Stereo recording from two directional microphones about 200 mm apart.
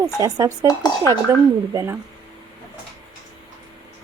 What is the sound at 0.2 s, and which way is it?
Speech, 20° right (ahead or behind).